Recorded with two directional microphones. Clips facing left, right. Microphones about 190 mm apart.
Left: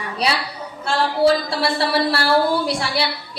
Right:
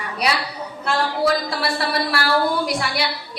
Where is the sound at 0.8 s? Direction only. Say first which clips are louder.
Left 4 dB; 30° left (ahead or behind).